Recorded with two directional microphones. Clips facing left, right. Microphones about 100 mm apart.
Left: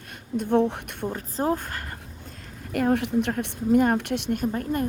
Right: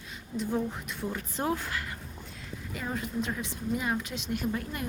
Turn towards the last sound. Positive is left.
turn(degrees=45)  # may be behind; listen again after turning